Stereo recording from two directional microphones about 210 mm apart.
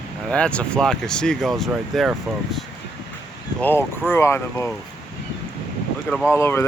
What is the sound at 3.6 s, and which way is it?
Speech, 10° left (ahead or behind).